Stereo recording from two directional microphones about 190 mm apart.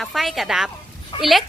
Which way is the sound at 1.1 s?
30° left (ahead or behind).